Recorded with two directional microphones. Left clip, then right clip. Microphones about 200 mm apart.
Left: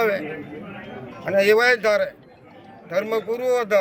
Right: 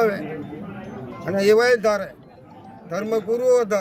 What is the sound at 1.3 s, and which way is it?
A man's voice, centre (ahead or behind).